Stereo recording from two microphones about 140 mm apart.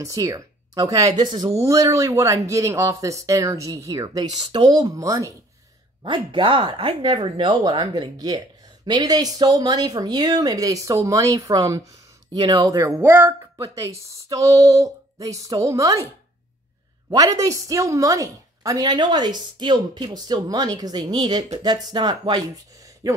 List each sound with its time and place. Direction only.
0.0 s a woman's voice: 25° right (ahead or behind)
6.0 s a woman's voice: 35° right (ahead or behind)
17.1 s a woman's voice: 25° right (ahead or behind)